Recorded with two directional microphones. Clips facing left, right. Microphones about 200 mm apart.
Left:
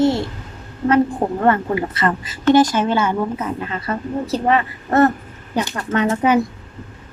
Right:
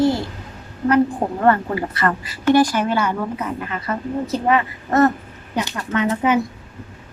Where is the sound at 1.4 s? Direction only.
20° left (ahead or behind).